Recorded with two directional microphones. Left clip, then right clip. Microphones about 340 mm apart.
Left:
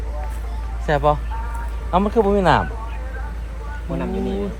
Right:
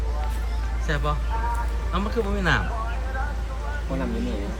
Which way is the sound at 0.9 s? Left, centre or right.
Centre.